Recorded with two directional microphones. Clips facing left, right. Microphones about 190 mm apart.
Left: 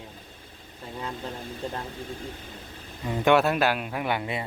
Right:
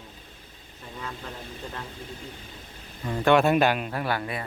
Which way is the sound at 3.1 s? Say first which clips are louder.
Right 1 dB; 10° left (ahead or behind).